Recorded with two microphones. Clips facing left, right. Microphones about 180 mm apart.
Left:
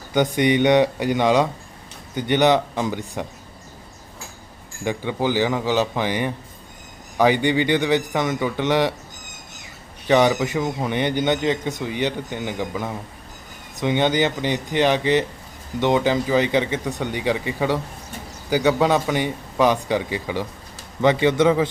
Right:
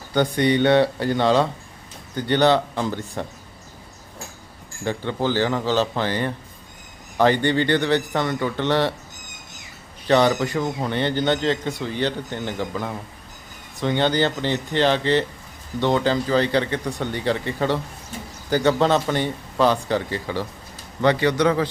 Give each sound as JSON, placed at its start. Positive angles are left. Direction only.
{"t": 0.1, "sound": "speech", "side_deg": 15}
{"t": 4.9, "sound": "speech", "side_deg": 15}
{"t": 10.1, "sound": "a man's voice", "side_deg": 15}